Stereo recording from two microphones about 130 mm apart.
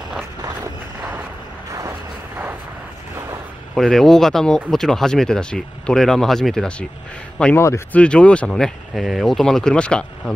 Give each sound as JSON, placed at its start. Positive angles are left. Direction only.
{"t": 1.7, "sound": "vehicle", "side_deg": -20}
{"t": 3.7, "sound": "speech", "side_deg": 5}
{"t": 7.5, "sound": "speech", "side_deg": 20}
{"t": 8.0, "sound": "speech", "side_deg": 10}